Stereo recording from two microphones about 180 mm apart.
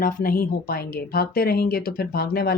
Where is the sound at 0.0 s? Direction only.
50° left (ahead or behind).